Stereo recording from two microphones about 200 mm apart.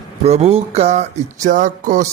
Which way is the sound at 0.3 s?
30° right (ahead or behind).